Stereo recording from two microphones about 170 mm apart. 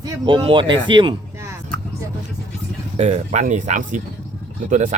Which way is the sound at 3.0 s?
45° right (ahead or behind).